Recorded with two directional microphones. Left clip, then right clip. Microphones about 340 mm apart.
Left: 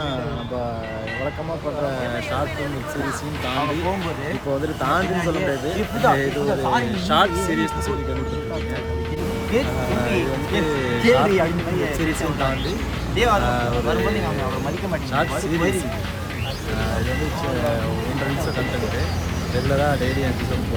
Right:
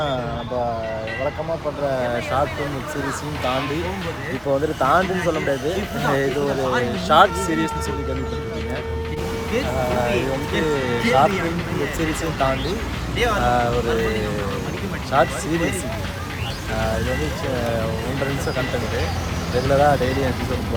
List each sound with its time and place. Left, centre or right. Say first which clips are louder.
2.0 s speech: right 3 dB; centre
6.7 s speech: right 6 dB; centre
9.9 s speech: even; centre
13.1 s speech: left 2 dB; centre
13.4 s speech: right 3 dB; centre
16.8 s speech: right 3 dB; centre
19.5 s speech: right 5 dB; centre